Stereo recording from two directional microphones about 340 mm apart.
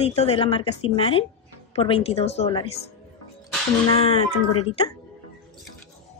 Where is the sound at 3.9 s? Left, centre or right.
Centre.